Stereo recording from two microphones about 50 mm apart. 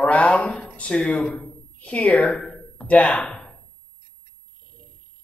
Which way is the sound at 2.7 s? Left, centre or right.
Left.